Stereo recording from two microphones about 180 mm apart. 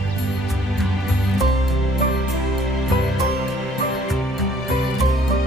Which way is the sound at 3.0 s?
Centre (ahead or behind).